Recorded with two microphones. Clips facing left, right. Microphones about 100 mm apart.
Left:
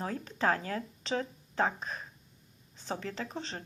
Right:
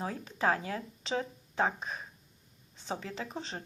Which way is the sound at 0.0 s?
10° right (ahead or behind).